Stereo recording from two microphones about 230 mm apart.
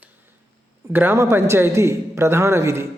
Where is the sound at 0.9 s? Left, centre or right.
Centre.